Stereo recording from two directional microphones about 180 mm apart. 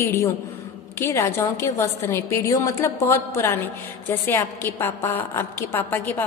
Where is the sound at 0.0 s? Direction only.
15° left (ahead or behind).